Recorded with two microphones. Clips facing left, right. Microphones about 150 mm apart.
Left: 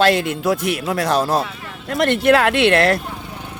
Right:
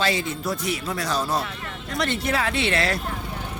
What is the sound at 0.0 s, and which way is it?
A man's voice, 60° left (ahead or behind).